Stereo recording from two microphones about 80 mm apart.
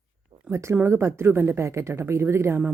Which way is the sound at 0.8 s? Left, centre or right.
Right.